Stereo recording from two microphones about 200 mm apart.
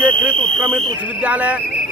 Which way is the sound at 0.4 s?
5° left (ahead or behind).